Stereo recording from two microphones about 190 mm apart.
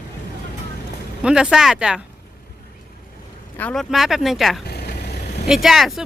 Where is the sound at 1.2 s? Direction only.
5° right (ahead or behind).